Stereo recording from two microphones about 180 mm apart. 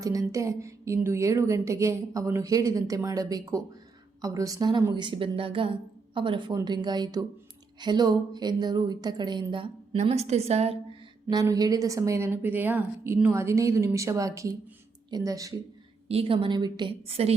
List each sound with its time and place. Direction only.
0.0 s a woman's voice: 20° right (ahead or behind); by 10.8 s 35° right (ahead or behind)
11.3 s a woman's voice: 20° right (ahead or behind)
16.0 s a woman's voice: 30° right (ahead or behind)